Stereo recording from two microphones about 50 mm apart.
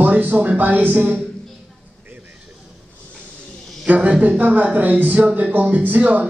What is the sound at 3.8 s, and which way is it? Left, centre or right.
A man's voice, right.